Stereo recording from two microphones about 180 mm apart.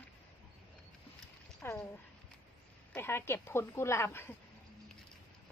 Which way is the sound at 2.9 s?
15° left (ahead or behind).